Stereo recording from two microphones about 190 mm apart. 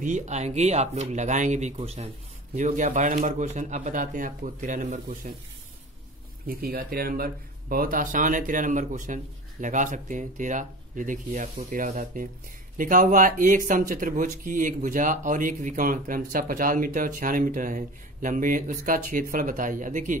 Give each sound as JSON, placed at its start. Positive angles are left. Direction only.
{"t": 0.0, "sound": "speech", "side_deg": -40}
{"t": 6.4, "sound": "speech", "side_deg": -50}